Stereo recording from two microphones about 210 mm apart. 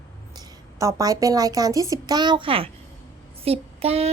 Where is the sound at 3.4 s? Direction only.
30° right (ahead or behind).